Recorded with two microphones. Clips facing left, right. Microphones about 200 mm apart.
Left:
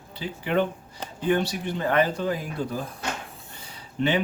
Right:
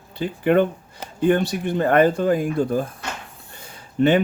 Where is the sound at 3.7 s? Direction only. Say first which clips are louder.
Right 7 dB; 50° right (ahead or behind).